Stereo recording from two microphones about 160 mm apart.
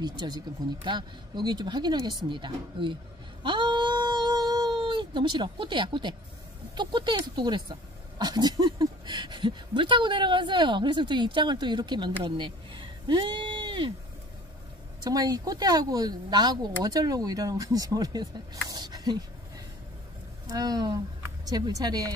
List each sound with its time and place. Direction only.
0.2 s speech: 30° right (ahead or behind)
3.4 s a sound: 30° right (ahead or behind)
6.7 s speech: 30° right (ahead or behind)
15.0 s speech: 25° right (ahead or behind)
20.4 s speech: 25° right (ahead or behind)